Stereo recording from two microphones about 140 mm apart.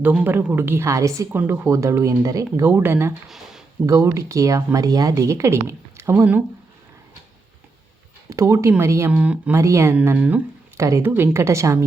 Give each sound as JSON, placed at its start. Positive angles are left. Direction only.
{"t": 0.0, "sound": "a woman's voice", "side_deg": -10}
{"t": 3.2, "sound": "speech", "side_deg": 0}
{"t": 3.8, "sound": "speech", "side_deg": -20}
{"t": 8.3, "sound": "speech", "side_deg": -20}
{"t": 9.1, "sound": "a woman's voice", "side_deg": -10}
{"t": 9.6, "sound": "a woman's voice", "side_deg": -20}